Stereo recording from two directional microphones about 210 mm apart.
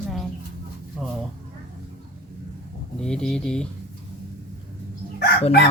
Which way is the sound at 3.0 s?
5° left (ahead or behind).